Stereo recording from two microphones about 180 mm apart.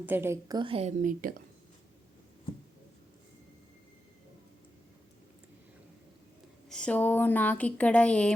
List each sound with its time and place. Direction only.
0.0 s a woman's voice: 10° right (ahead or behind); by 1.4 s 50° right (ahead or behind)
6.7 s a woman's voice: 5° left (ahead or behind)